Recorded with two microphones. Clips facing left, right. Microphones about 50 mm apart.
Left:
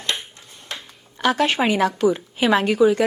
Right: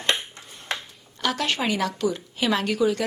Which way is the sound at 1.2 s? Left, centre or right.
Left.